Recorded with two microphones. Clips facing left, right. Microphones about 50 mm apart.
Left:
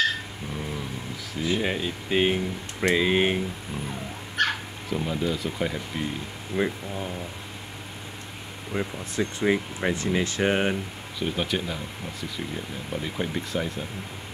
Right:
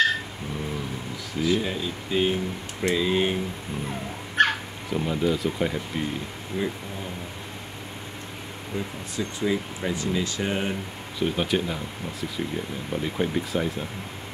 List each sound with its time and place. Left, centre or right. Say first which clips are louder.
1.4 s speech: right 1 dB; left
4.4 s dog: right 4 dB; right
4.8 s speech: right 2 dB; centre
6.6 s speech: left 3 dB; left
8.7 s speech: left 3 dB; left
11.1 s speech: right 3 dB; centre